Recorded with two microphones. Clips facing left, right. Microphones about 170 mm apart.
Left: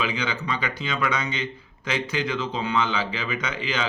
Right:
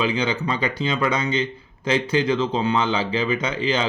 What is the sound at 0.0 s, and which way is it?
Speech, 30° right (ahead or behind).